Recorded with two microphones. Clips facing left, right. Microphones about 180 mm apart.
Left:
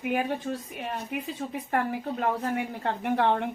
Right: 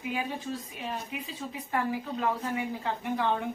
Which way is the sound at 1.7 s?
55° left (ahead or behind).